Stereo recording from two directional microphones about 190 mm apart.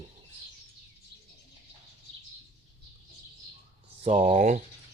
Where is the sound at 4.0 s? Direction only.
35° right (ahead or behind).